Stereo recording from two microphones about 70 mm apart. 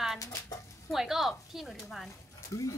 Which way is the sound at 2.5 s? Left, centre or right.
Left.